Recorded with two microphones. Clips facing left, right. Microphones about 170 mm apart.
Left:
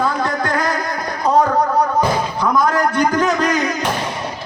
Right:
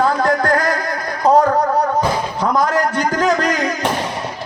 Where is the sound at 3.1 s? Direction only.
40° right (ahead or behind).